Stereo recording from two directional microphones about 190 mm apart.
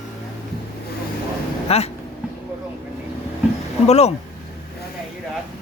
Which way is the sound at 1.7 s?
35° left (ahead or behind).